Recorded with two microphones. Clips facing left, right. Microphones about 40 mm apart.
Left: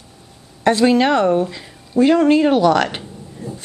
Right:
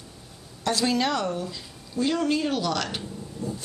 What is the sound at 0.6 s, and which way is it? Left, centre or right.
A woman's voice, left.